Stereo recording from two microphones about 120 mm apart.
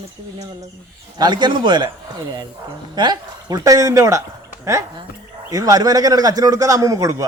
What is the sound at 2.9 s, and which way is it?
A man's voice, 35° right (ahead or behind).